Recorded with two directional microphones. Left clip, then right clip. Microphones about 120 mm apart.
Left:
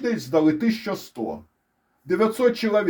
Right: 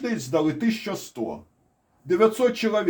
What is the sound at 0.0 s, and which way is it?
Speech, 50° left (ahead or behind).